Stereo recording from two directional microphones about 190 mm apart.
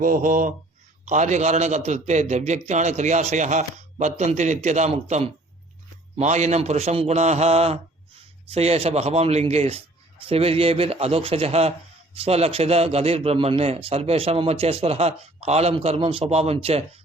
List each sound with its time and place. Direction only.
0.0 s mantra: 45° right (ahead or behind)
1.0 s speech: 40° right (ahead or behind)